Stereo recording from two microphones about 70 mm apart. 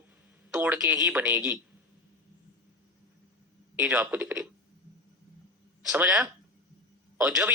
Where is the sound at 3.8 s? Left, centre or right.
Centre.